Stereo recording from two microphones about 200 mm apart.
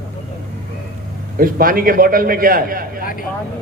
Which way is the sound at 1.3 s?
45° right (ahead or behind).